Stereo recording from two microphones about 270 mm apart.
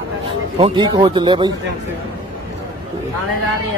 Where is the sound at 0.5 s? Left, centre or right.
Centre.